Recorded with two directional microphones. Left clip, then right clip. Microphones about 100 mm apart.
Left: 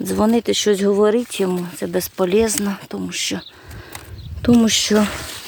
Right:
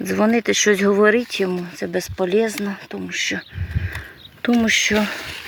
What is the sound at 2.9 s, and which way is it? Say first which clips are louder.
Speech: right 4 dB; 85° left.